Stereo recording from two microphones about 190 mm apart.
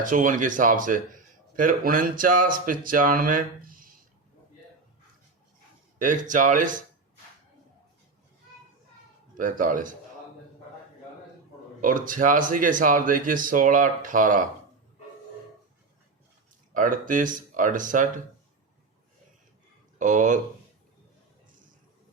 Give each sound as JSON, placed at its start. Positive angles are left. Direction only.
{"t": 0.0, "sound": "speech", "side_deg": -45}
{"t": 6.0, "sound": "speech", "side_deg": -45}
{"t": 9.4, "sound": "speech", "side_deg": -45}
{"t": 11.8, "sound": "speech", "side_deg": -45}
{"t": 16.7, "sound": "speech", "side_deg": -45}
{"t": 20.0, "sound": "speech", "side_deg": -40}